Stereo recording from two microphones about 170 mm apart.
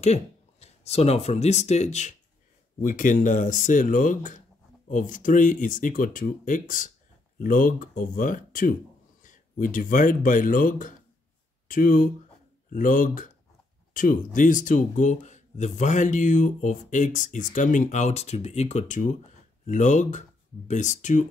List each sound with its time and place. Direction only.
0.0 s speech: 40° left (ahead or behind)